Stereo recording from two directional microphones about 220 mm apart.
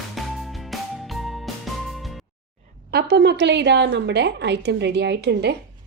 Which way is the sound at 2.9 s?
50° right (ahead or behind).